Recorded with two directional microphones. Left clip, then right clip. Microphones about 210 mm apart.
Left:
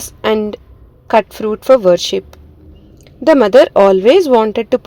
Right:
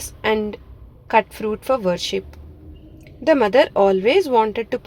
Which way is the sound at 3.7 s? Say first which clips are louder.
Left 8 dB; 35° left (ahead or behind).